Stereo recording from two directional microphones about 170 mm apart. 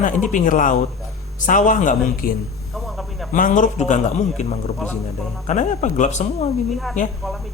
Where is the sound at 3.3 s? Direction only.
50° left (ahead or behind).